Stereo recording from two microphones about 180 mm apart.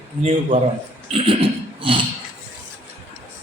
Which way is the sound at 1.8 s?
30° right (ahead or behind).